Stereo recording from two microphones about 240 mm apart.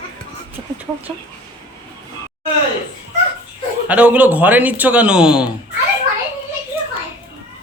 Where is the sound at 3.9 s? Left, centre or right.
Centre.